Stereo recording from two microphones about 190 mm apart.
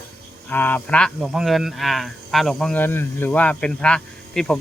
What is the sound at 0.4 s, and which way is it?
Speech, 10° left (ahead or behind).